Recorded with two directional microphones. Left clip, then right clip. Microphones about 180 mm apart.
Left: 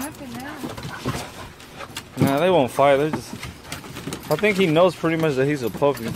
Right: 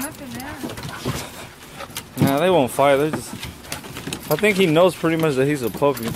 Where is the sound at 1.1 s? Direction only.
20° left (ahead or behind).